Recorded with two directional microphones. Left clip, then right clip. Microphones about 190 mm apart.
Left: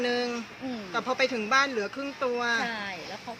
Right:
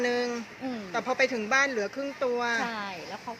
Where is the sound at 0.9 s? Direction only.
5° right (ahead or behind).